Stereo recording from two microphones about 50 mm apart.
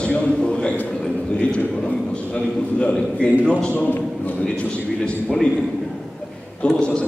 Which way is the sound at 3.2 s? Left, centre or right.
Left.